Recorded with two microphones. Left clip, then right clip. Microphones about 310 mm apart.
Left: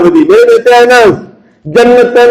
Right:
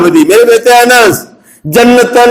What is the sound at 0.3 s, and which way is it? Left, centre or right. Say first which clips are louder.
A man's voice: left 1 dB; right.